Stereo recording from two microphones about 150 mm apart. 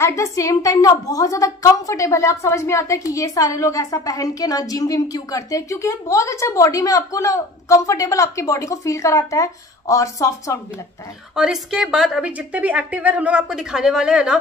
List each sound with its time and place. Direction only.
0.0 s a woman's voice: 20° left (ahead or behind)
11.3 s a woman's voice: 5° right (ahead or behind)